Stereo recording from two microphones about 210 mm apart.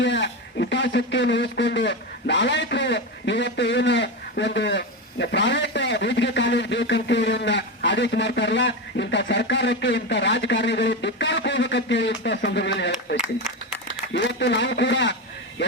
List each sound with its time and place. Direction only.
0.0 s a man's voice: 60° left (ahead or behind)